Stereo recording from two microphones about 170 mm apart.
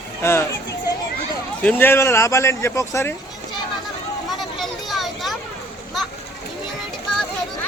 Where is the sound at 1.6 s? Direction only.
10° left (ahead or behind).